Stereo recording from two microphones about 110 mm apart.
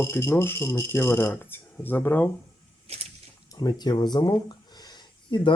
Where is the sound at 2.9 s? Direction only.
65° right (ahead or behind).